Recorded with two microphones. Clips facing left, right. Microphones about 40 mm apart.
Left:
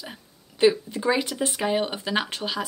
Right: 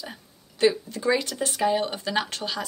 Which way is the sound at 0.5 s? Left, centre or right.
Left.